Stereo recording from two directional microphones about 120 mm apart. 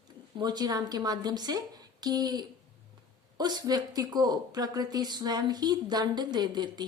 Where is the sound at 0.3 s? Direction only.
35° right (ahead or behind).